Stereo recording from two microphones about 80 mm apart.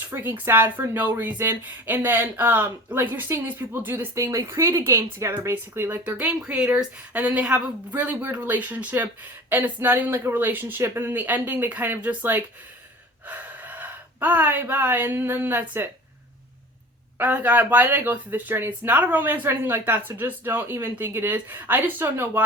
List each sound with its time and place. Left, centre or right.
0.1 s speech: right
6.1 s speech: centre
17.2 s speech: right